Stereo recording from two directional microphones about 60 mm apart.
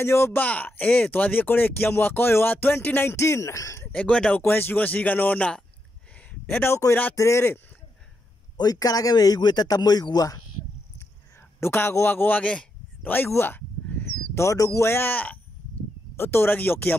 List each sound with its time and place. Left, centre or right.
0.0 s a man's voice: left
0.4 s speech: left
3.9 s speech: centre
4.4 s speech: left
6.8 s speech: left
7.2 s a man's voice: left
8.6 s speech: left
11.6 s speech: left
13.0 s speech: left
13.3 s a man's voice: left
13.6 s a sound: left
14.3 s speech: left
14.9 s speech: left
16.2 s speech: left